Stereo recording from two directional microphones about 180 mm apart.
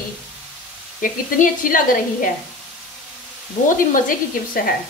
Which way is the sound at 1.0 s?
50° left (ahead or behind).